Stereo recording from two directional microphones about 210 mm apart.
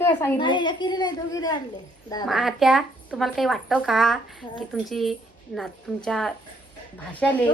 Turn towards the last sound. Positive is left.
turn(degrees=0)  # may be behind; listen again after turning